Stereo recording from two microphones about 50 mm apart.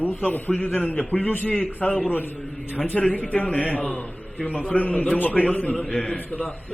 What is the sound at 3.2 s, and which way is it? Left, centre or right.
A man's voice, left.